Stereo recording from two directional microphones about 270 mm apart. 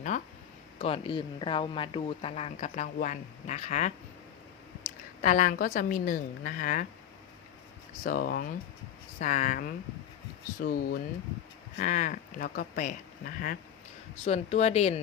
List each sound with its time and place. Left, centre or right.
0.1 s speech: left
5.2 s speech: left
8.0 s speech: left